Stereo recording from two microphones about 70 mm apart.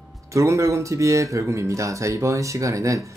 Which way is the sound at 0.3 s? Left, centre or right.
Right.